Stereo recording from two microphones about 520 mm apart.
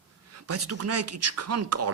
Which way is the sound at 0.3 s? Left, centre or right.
Right.